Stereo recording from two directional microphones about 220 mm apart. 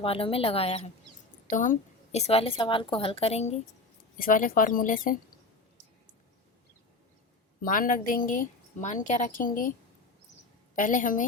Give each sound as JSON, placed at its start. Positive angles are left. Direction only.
{"t": 0.0, "sound": "a woman's voice", "side_deg": 25}
{"t": 7.6, "sound": "a woman's voice", "side_deg": 40}
{"t": 10.8, "sound": "a woman's voice", "side_deg": 35}